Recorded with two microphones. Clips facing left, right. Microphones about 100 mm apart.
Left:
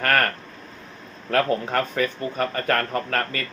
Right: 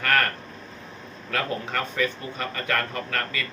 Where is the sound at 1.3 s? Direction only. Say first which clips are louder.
Left 7 dB; 45° left (ahead or behind).